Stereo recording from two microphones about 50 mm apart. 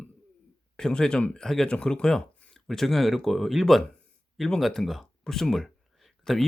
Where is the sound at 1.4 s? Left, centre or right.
Centre.